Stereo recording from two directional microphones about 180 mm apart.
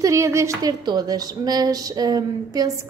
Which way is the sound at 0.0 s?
15° right (ahead or behind).